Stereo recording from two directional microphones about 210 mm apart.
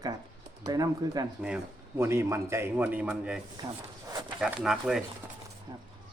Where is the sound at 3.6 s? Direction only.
20° right (ahead or behind).